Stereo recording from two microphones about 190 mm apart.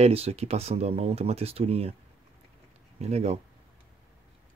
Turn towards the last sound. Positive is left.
turn(degrees=-35)  # may be behind; listen again after turning